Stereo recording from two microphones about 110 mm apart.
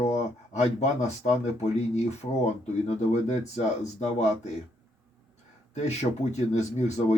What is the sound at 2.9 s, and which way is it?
Speech, 85° left.